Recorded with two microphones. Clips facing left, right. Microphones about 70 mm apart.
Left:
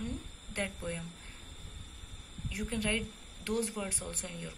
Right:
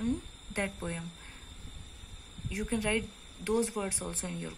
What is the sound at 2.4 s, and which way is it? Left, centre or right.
Speech, right.